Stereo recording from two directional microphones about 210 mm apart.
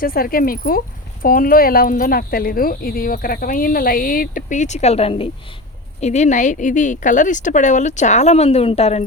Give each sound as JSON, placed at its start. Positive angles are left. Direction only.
{"t": 0.0, "sound": "speech", "side_deg": 45}